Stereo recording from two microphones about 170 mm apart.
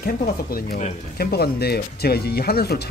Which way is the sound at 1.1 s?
65° left (ahead or behind).